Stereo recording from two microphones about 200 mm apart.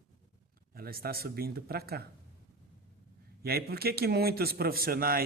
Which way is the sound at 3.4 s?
50° right (ahead or behind).